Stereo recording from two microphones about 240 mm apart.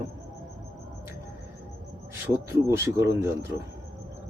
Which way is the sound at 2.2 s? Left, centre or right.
Centre.